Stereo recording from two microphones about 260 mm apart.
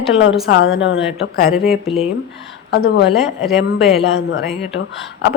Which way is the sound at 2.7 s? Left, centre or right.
Left.